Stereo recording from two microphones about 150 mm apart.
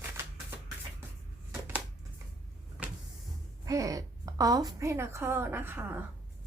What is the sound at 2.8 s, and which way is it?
Vehicle, 5° right (ahead or behind).